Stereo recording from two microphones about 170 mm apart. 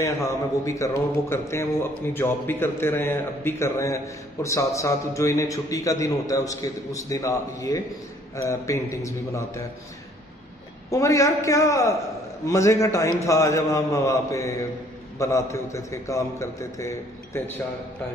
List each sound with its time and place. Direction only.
0.7 s a man's voice: 20° left (ahead or behind)
10.9 s a man's voice: 20° left (ahead or behind)